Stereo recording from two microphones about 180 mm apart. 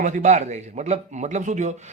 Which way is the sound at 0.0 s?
45° right (ahead or behind).